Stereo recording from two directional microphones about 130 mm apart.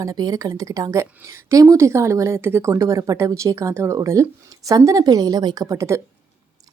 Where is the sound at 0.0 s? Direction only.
25° right (ahead or behind).